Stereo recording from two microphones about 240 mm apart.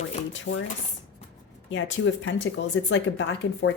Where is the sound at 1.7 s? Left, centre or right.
Left.